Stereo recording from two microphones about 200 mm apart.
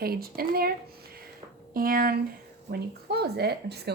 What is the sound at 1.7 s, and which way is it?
A woman's voice, 45° right (ahead or behind).